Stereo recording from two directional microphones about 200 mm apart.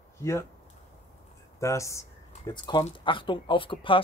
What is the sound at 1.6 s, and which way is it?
Speech, 15° left (ahead or behind).